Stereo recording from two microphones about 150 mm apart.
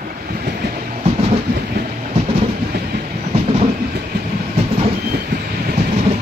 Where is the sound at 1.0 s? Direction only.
45° right (ahead or behind).